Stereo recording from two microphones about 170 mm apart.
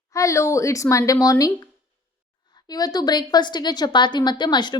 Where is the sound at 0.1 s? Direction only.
20° left (ahead or behind).